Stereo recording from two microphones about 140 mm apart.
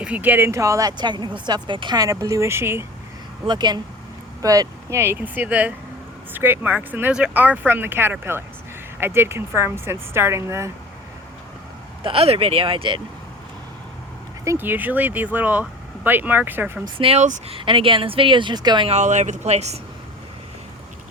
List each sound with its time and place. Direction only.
0.0 s speech: 10° right (ahead or behind)
3.4 s speech: 30° right (ahead or behind)
12.0 s speech: 45° right (ahead or behind)
14.4 s speech: 15° right (ahead or behind)
16.8 s speech: 40° right (ahead or behind)
18.9 s speech: 55° right (ahead or behind)